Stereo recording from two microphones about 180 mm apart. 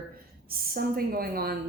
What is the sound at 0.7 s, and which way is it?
Speech, 55° right (ahead or behind).